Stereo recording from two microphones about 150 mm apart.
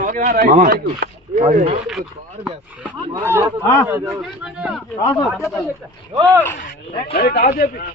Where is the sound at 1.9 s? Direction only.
5° right (ahead or behind).